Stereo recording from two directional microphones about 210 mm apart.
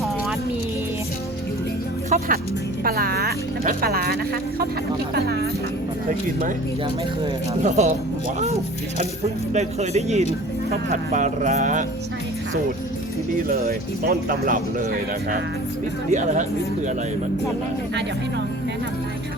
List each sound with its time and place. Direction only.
2.0 s speech: 40° right (ahead or behind)
7.6 s speech: 35° right (ahead or behind)
9.5 s speech: 30° right (ahead or behind)
13.5 s speech: 45° right (ahead or behind)
16.0 s speech: 35° right (ahead or behind)